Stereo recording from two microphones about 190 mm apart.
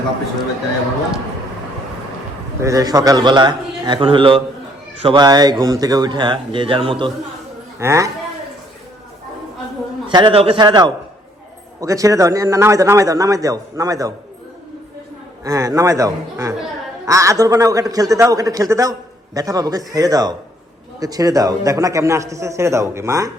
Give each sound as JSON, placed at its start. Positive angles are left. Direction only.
{"t": 2.6, "sound": "a man's voice", "side_deg": -15}
{"t": 7.8, "sound": "a man's voice", "side_deg": -15}
{"t": 10.1, "sound": "a man's voice", "side_deg": -25}
{"t": 15.4, "sound": "a man's voice", "side_deg": -15}